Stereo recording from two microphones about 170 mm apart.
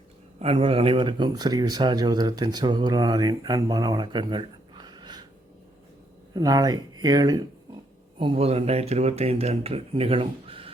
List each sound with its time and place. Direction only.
0.3 s speech: 35° right (ahead or behind)
6.3 s speech: 20° right (ahead or behind)
8.2 s speech: 35° right (ahead or behind)